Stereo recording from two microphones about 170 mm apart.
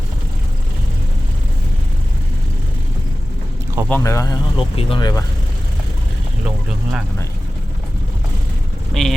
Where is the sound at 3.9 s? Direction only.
15° left (ahead or behind).